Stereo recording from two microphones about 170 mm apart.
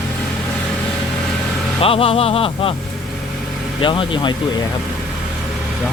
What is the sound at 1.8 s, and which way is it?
Speech, 35° left (ahead or behind).